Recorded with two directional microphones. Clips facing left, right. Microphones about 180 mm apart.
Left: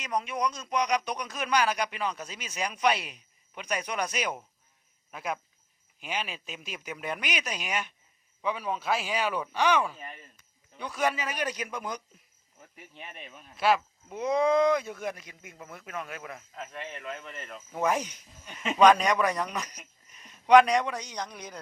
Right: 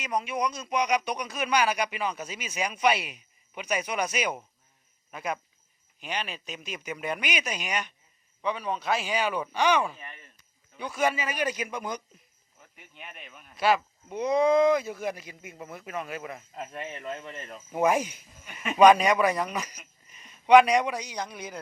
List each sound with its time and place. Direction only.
0.0 s speech: 5° right (ahead or behind)
12.7 s speech: 35° left (ahead or behind)
13.6 s speech: centre (ahead or behind)
16.9 s speech: 30° right (ahead or behind)
17.7 s speech: 10° right (ahead or behind)